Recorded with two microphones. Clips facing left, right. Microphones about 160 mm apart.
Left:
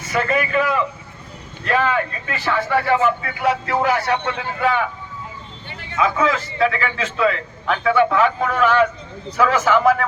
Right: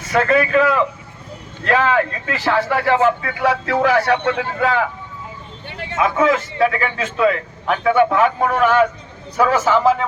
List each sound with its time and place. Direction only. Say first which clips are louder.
0.3 s speech: right 5 dB; 90° right; by 4.4 s 70° right (ahead or behind)
5.6 s vehicle: right 9 dB; 80° right
6.1 s a man's voice: right 3 dB; 50° right (ahead or behind); by 10.1 s 25° right (ahead or behind)